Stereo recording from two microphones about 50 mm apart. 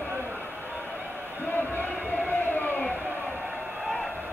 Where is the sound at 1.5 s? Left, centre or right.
Left.